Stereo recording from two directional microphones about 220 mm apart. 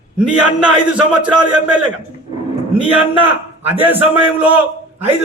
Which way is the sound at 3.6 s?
10° right (ahead or behind).